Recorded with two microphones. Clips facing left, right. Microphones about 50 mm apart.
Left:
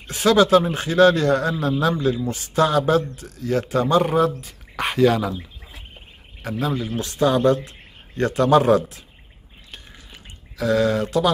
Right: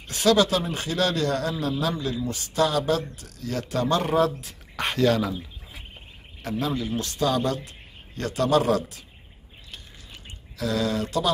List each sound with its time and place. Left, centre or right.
0.0 s speech: left
3.7 s speech: centre
4.0 s speech: centre
6.4 s speech: centre
7.0 s a man's voice: left
10.6 s speech: left